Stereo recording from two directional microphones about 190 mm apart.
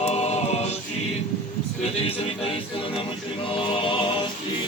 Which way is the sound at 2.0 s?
30° left (ahead or behind).